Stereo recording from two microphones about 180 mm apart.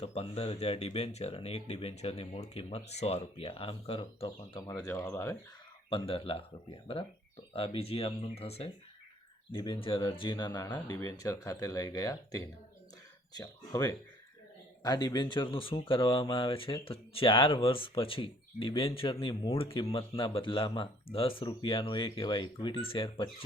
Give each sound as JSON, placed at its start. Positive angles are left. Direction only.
{"t": 0.0, "sound": "speech", "side_deg": 35}
{"t": 5.9, "sound": "speech", "side_deg": 30}